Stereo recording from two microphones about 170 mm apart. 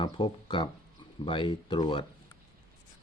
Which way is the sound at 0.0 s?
30° left (ahead or behind).